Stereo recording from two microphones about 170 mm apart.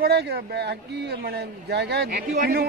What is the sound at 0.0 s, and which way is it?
A man's voice, 70° right (ahead or behind).